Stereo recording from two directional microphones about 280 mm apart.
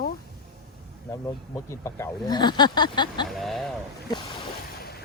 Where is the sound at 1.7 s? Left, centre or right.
Centre.